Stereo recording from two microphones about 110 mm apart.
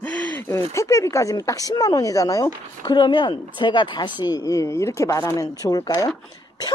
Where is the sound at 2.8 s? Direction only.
45° left (ahead or behind).